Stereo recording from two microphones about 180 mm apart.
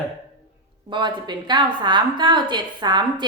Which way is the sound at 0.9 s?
25° right (ahead or behind).